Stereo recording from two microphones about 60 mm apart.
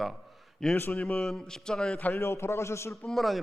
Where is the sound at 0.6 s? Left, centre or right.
Centre.